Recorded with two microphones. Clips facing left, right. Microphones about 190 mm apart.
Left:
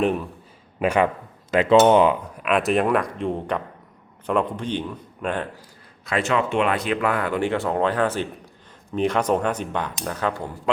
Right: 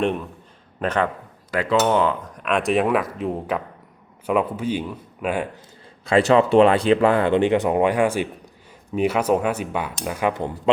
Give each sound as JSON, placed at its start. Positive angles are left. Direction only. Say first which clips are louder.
{"t": 0.0, "sound": "a man's voice", "louder": "left 1 dB", "side_deg": 5}
{"t": 1.5, "sound": "cutlery", "louder": "left 5 dB", "side_deg": 20}
{"t": 2.3, "sound": "a man's voice", "louder": "even", "side_deg": 5}
{"t": 6.1, "sound": "speech", "louder": "right 7 dB", "side_deg": -30}